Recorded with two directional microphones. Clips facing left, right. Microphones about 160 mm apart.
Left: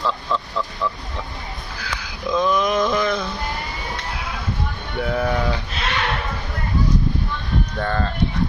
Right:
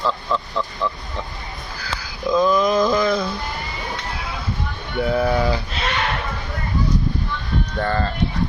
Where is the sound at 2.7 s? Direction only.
5° right (ahead or behind).